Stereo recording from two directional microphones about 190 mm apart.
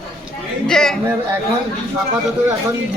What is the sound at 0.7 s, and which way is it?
Speech, 5° left (ahead or behind).